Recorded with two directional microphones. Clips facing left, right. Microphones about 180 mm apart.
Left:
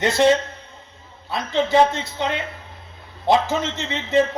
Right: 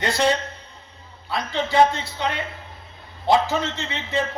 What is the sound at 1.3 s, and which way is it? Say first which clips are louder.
A man's voice: left 4 dB; 20° left (ahead or behind).